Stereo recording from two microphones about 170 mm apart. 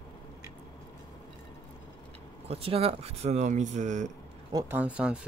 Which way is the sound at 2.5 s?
35° right (ahead or behind).